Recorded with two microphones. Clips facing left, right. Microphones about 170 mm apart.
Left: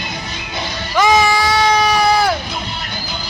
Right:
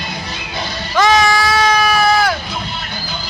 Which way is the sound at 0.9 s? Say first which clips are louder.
Even; 15° left (ahead or behind).